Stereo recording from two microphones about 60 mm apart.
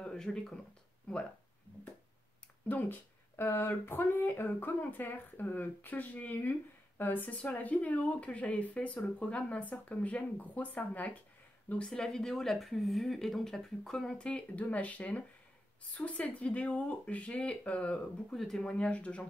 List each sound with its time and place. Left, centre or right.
0.1 s speech: centre
2.7 s a woman's voice: left
11.9 s a woman's voice: centre
18.3 s speech: centre
18.7 s a woman's voice: left